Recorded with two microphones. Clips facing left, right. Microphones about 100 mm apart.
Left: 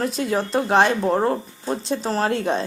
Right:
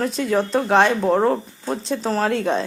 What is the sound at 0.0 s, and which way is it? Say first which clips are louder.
Speech: right 2 dB; 5° left (ahead or behind).